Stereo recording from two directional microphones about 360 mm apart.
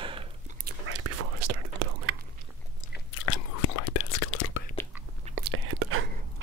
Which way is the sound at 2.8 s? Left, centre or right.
Left.